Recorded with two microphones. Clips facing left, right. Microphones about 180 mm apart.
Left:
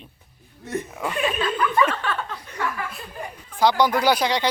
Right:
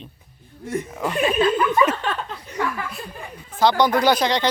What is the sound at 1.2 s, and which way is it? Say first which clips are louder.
Speech: right 5 dB; 40° right (ahead or behind).